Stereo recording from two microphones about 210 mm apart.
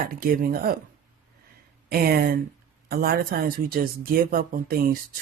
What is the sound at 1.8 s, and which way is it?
Speech, 45° right (ahead or behind).